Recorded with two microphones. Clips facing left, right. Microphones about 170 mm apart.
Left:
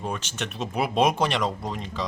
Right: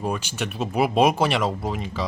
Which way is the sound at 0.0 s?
10° right (ahead or behind).